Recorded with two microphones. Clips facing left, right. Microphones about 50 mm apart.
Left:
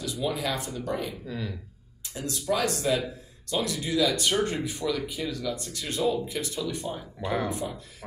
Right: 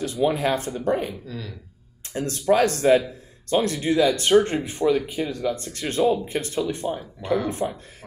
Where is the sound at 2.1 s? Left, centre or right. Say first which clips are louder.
Right 8 dB; right.